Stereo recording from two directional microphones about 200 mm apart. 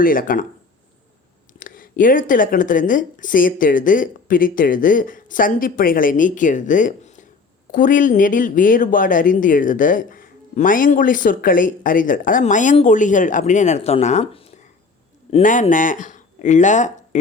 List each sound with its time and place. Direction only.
0.0 s a woman's voice: 45° left (ahead or behind)
1.5 s a woman's voice: 45° left (ahead or behind)